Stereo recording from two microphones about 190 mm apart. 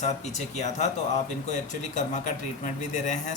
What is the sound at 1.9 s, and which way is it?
A man's voice, 40° left (ahead or behind).